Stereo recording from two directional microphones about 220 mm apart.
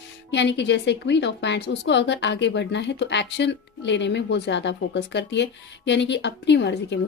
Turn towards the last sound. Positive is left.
turn(degrees=50)  # may be behind; listen again after turning